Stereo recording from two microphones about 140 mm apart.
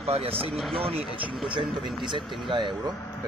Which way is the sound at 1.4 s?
35° right (ahead or behind).